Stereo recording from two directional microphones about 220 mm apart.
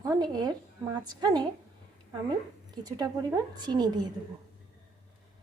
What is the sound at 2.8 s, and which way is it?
A woman's voice, 15° right (ahead or behind).